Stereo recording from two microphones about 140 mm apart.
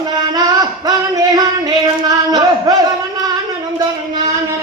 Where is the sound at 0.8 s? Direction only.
25° right (ahead or behind).